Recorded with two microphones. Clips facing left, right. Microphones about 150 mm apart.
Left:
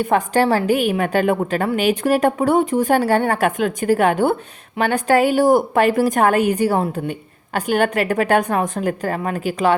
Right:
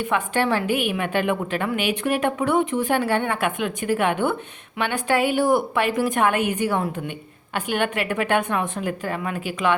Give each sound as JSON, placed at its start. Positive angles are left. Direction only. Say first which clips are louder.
{"t": 0.0, "sound": "a woman's voice", "louder": "left 6 dB", "side_deg": 40}